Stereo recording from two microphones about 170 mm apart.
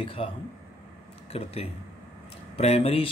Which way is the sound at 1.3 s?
35° left (ahead or behind).